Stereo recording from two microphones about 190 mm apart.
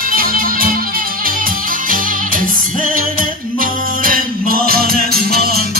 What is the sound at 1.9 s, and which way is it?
Music, 45° right (ahead or behind).